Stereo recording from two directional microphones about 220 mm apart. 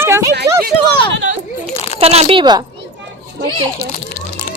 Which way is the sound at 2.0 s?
25° right (ahead or behind).